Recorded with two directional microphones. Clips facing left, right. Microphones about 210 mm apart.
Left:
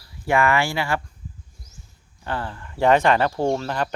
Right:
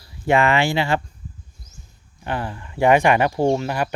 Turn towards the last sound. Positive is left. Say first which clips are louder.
# right 3 dB
turn(degrees=-10)  # may be behind; listen again after turning